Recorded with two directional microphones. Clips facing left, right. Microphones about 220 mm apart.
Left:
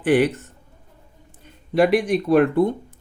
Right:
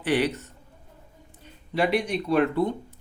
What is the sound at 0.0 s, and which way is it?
A man's voice, 50° left (ahead or behind).